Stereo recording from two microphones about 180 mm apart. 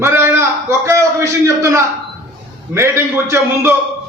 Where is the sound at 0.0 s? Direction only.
15° right (ahead or behind).